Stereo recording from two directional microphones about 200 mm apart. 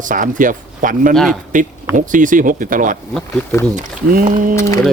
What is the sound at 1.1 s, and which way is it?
Speech, centre (ahead or behind).